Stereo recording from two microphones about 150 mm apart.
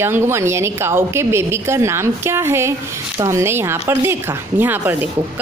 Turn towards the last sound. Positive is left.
turn(degrees=-15)  # may be behind; listen again after turning